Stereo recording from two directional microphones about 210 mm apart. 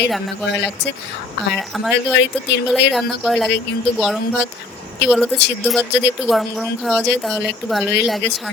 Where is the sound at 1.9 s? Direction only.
55° left (ahead or behind).